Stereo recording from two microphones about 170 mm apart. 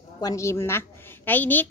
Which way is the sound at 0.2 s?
20° left (ahead or behind).